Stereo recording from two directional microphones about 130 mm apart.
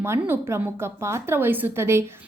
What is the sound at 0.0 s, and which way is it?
A woman's voice, 20° right (ahead or behind).